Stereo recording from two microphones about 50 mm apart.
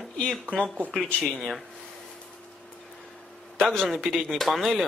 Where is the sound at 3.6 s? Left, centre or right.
Centre.